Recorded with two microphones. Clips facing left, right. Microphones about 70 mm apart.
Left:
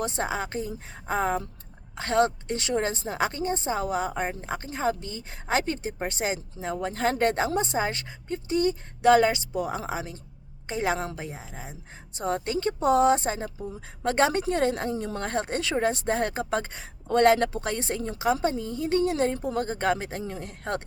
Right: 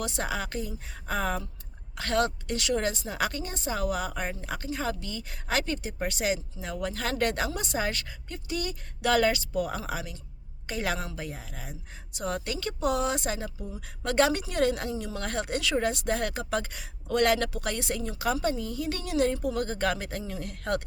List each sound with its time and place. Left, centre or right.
0.0 s a woman's voice: left